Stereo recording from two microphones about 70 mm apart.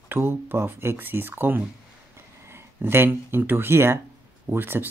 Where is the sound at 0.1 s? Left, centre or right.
Right.